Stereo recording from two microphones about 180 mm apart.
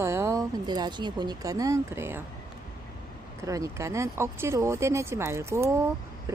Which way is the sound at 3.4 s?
20° right (ahead or behind).